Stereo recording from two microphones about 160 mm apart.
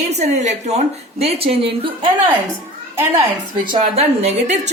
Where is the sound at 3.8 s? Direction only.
45° right (ahead or behind).